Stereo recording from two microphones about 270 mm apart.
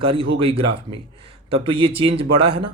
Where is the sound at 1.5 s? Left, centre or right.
Centre.